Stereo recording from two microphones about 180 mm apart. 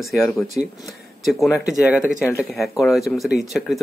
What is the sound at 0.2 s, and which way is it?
Speech, 5° left (ahead or behind).